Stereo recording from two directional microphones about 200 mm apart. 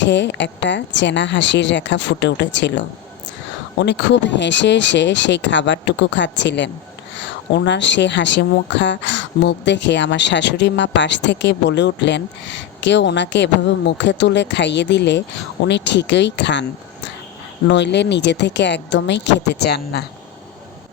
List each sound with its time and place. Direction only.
0.0 s speech: 60° left (ahead or behind)